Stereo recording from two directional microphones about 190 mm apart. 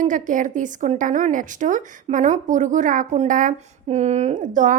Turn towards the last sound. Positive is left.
turn(degrees=-45)  # may be behind; listen again after turning